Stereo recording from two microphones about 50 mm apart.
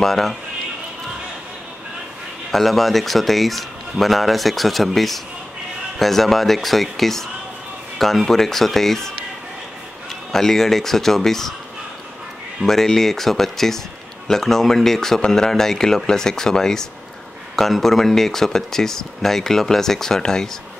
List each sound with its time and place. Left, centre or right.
0.0 s speech: centre
2.5 s speech: centre
10.3 s speech: centre
12.6 s speech: centre